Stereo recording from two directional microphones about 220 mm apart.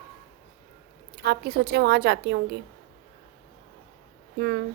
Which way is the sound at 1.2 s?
45° right (ahead or behind).